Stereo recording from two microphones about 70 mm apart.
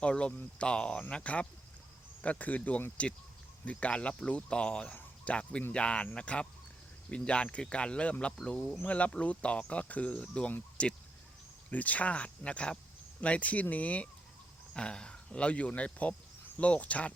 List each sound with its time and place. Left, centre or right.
0.0 s speech: centre